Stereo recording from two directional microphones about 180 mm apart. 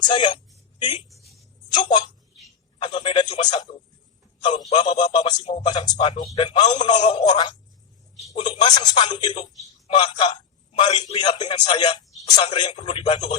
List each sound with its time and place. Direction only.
0.0 s speech: 25° left (ahead or behind)
1.1 s a sound: centre (ahead or behind)
2.7 s a man's voice: 25° left (ahead or behind)